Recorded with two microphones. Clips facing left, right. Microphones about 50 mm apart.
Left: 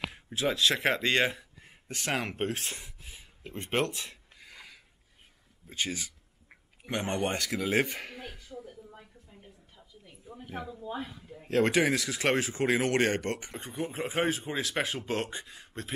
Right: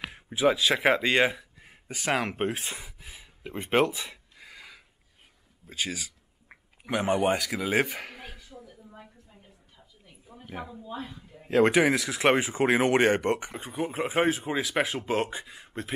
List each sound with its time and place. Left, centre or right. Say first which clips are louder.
0.0 s a man's voice: right 6 dB; centre
8.5 s a sound: left 3 dB; centre
10.2 s a man's voice: even; centre
11.4 s speech: right 4 dB; centre
13.6 s speech: right 4 dB; centre